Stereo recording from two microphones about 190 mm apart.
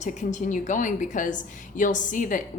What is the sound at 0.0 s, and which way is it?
A woman's voice, 40° left (ahead or behind).